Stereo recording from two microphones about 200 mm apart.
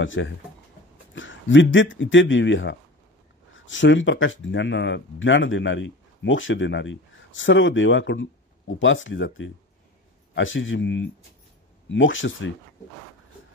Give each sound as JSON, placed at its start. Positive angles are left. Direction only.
{"t": 0.0, "sound": "speech", "side_deg": 70}